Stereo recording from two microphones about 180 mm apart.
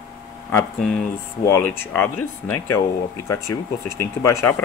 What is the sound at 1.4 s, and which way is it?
Speech, 10° left (ahead or behind).